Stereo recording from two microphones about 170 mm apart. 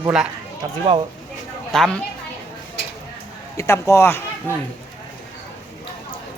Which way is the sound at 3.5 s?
15° left (ahead or behind).